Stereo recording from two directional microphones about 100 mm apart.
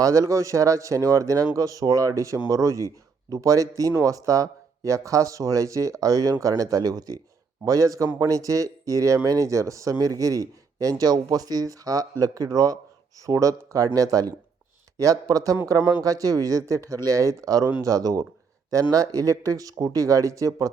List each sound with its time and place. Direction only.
0.0 s speech: 30° right (ahead or behind)